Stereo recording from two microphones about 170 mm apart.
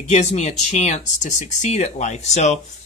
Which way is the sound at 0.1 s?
40° left (ahead or behind).